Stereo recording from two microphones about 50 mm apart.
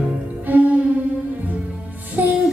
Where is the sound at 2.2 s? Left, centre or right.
Right.